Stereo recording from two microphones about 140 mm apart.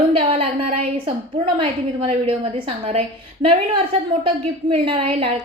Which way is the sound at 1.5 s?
40° right (ahead or behind).